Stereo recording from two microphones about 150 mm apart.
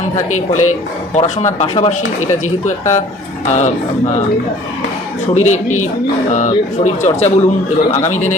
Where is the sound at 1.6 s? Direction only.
35° left (ahead or behind).